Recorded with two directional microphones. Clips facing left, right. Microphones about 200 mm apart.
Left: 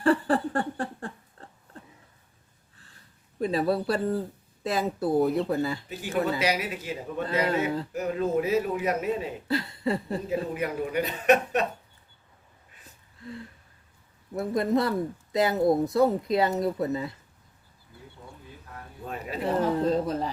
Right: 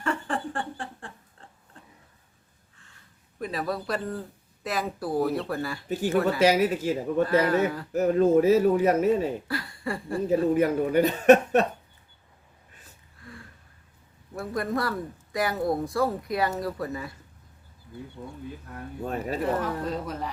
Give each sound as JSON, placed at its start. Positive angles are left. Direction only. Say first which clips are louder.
{"t": 0.0, "sound": "a sound", "louder": "left 7 dB", "side_deg": 35}
{"t": 3.3, "sound": "speech", "louder": "left 5 dB", "side_deg": 30}
{"t": 6.4, "sound": "speech", "louder": "right 7 dB", "side_deg": -45}
{"t": 7.3, "sound": "speech", "louder": "even", "side_deg": 20}
{"t": 7.9, "sound": "speech", "louder": "right 9 dB", "side_deg": -40}
{"t": 9.5, "sound": "a sound", "louder": "left 5 dB", "side_deg": 25}
{"t": 10.2, "sound": "speech", "louder": "right 10 dB", "side_deg": -40}
{"t": 13.2, "sound": "a sound", "louder": "left 7 dB", "side_deg": 25}
{"t": 14.3, "sound": "speech", "louder": "left 4 dB", "side_deg": 20}
{"t": 19.0, "sound": "speech", "louder": "right 5 dB", "side_deg": -45}
{"t": 19.5, "sound": "speech", "louder": "left 5 dB", "side_deg": 25}